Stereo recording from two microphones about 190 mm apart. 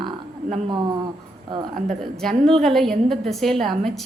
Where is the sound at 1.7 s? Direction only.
40° right (ahead or behind).